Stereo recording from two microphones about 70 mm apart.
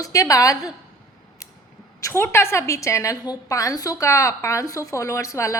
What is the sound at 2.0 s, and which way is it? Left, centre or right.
Speech, left.